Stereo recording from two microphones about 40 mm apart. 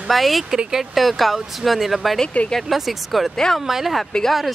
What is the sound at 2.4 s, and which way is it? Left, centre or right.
Speech, left.